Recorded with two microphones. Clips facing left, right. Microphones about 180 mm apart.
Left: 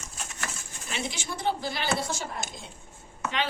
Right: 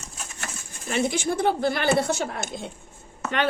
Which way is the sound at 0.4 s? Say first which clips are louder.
Right 5 dB; 50° right (ahead or behind).